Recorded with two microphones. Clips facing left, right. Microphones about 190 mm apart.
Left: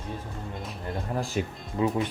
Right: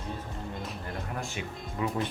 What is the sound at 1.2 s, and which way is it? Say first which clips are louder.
Speech: left 7 dB; 35° left (ahead or behind).